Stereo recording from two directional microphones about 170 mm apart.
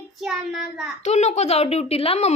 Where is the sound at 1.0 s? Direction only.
40° left (ahead or behind).